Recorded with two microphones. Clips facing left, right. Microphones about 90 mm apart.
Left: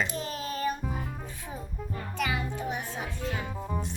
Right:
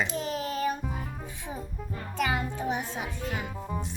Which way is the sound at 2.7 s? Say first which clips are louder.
Right 2 dB; 15° right (ahead or behind).